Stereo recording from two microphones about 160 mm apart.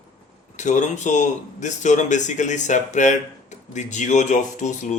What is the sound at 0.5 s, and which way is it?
Speech, 50° left (ahead or behind).